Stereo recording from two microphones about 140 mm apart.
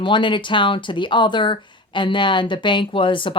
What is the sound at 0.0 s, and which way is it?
Speech, 35° left (ahead or behind).